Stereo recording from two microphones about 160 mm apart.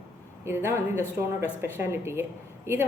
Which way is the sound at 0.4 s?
15° right (ahead or behind).